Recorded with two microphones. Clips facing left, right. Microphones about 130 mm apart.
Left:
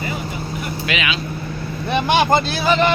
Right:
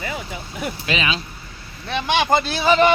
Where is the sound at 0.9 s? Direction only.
35° right (ahead or behind).